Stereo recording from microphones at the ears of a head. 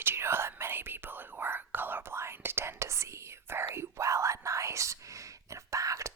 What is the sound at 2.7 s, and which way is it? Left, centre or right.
Whispering, right.